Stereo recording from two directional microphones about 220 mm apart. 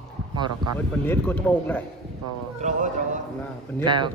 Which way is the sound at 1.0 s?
10° left (ahead or behind).